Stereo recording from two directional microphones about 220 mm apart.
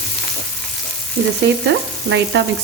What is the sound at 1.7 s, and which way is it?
Speech, 55° right (ahead or behind).